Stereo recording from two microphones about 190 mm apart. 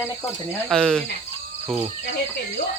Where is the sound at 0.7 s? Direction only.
5° left (ahead or behind).